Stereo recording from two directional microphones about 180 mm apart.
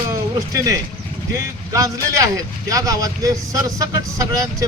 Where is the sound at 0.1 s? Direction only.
20° right (ahead or behind).